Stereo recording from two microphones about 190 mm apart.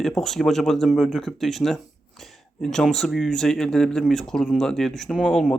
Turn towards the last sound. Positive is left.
turn(degrees=5)  # may be behind; listen again after turning